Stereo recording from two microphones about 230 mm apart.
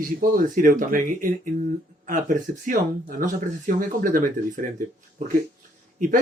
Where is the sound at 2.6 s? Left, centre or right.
Right.